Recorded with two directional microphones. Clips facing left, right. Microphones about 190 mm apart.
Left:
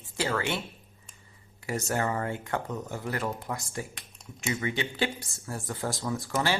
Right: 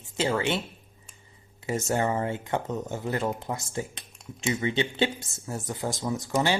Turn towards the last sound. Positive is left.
turn(degrees=-20)  # may be behind; listen again after turning